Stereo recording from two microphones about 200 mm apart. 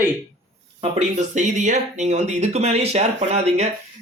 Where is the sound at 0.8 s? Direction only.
35° right (ahead or behind).